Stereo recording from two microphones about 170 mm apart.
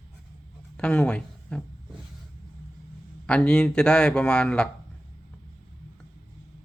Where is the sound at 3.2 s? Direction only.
5° left (ahead or behind).